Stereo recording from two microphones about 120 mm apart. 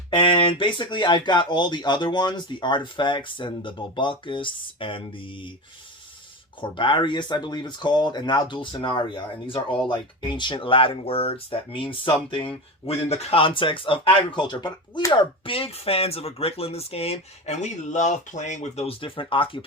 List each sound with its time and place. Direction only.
0.1 s speech: 45° left (ahead or behind)
6.6 s speech: 45° left (ahead or behind)
12.8 s speech: 55° left (ahead or behind)